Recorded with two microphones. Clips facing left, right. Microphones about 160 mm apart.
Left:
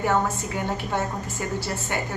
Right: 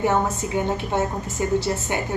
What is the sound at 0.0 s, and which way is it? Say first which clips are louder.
A woman's voice: right 2 dB; 20° right (ahead or behind).